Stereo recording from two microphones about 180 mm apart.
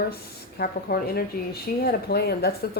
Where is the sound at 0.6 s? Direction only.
55° left (ahead or behind).